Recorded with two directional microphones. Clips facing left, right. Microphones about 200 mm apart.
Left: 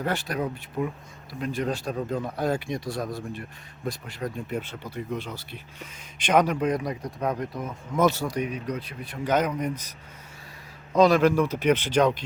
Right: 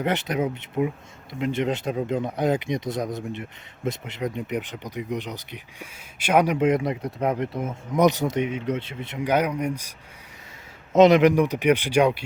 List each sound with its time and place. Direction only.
0.0 s speech: 20° right (ahead or behind)
6.6 s speech: 25° right (ahead or behind)
9.1 s speech: 10° right (ahead or behind)
10.9 s speech: 20° right (ahead or behind)